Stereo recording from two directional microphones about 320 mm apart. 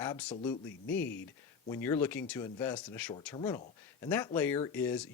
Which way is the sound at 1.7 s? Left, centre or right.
Centre.